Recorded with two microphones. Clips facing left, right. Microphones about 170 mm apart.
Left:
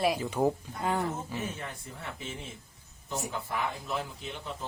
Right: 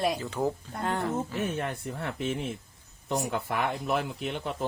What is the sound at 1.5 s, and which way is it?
A man's voice, 60° right (ahead or behind).